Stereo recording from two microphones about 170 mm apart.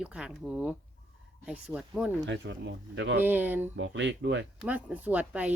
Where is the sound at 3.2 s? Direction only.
10° right (ahead or behind).